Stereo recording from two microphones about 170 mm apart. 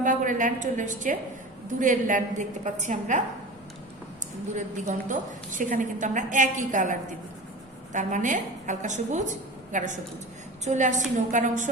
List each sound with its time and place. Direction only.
0.0 s a woman's voice: 50° right (ahead or behind)
4.5 s a woman's voice: 50° right (ahead or behind)